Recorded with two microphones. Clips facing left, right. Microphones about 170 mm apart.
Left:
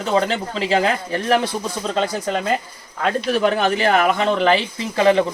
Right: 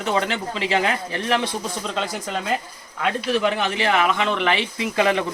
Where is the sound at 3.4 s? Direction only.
40° left (ahead or behind).